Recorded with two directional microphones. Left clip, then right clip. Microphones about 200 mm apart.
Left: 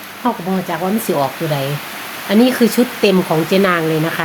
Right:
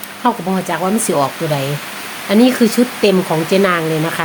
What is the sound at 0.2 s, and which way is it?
Speech, 30° right (ahead or behind).